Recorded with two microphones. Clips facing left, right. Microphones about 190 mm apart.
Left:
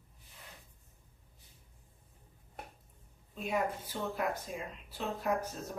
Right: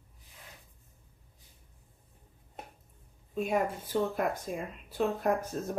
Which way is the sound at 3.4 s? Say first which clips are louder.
Right 4 dB; 50° right (ahead or behind).